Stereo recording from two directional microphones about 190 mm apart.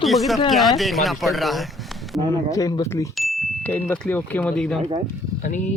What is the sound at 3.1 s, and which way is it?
Speech, centre (ahead or behind).